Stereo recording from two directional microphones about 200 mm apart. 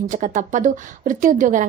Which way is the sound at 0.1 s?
40° right (ahead or behind).